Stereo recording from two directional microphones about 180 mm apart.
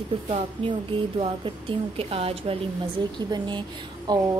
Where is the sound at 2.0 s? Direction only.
35° right (ahead or behind).